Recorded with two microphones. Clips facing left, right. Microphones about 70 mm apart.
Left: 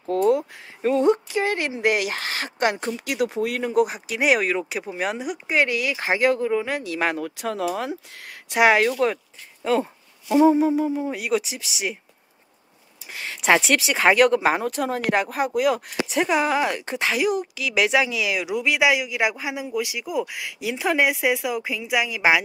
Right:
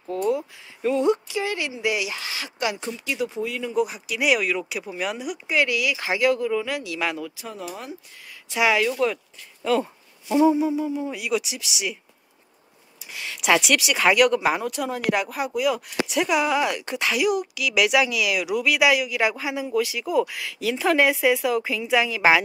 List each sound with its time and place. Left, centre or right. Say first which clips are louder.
0.1 s a sound: left 4 dB; left
0.8 s speech: left 2 dB; left
3.1 s speech: left 3 dB; left
7.3 s speech: left 9 dB; left
9.6 s speech: left 1 dB; left
13.1 s speech: left 2 dB; left; by 22.4 s centre